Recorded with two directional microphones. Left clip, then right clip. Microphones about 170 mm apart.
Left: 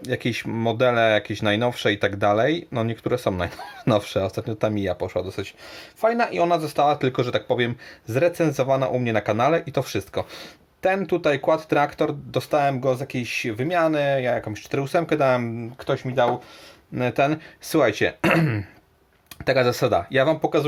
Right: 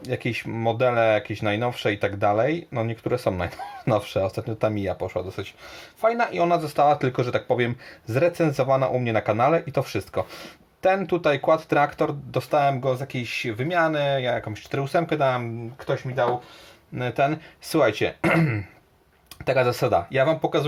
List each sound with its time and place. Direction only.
0.0 s speech: 20° left (ahead or behind)
16.9 s speech: 35° left (ahead or behind)